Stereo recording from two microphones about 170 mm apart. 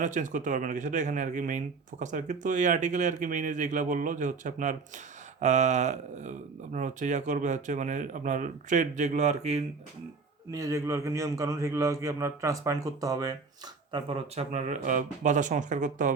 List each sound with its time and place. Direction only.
0.0 s speech: 50° right (ahead or behind)
10.5 s a man's voice: 20° right (ahead or behind)
13.9 s speech: 35° right (ahead or behind)